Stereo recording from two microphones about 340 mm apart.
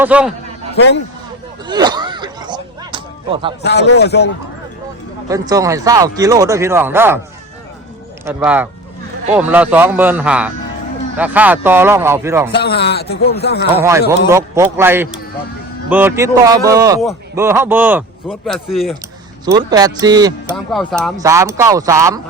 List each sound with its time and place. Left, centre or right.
0.0 s speech: centre
0.8 s a man's voice: left
1.6 s a sound: centre
3.6 s a man's voice: left
5.3 s speech: centre
8.2 s speech: centre
12.5 s a man's voice: left
13.7 s speech: centre
19.5 s speech: centre
20.7 s speech: centre